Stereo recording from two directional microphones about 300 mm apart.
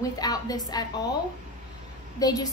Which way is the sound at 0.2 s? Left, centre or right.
Centre.